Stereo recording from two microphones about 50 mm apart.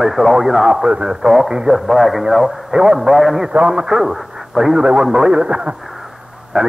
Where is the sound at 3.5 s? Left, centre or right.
Centre.